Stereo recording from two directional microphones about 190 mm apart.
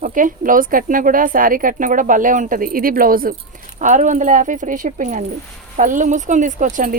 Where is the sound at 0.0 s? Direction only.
45° right (ahead or behind).